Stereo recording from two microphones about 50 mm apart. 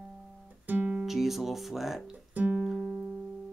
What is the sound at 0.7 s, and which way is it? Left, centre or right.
Music, right.